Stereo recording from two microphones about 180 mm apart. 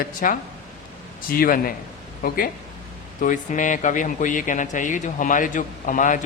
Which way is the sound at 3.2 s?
45° left (ahead or behind).